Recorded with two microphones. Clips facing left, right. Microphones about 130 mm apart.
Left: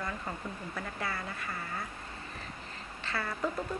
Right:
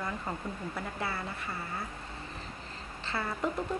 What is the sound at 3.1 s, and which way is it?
Speech, 25° right (ahead or behind).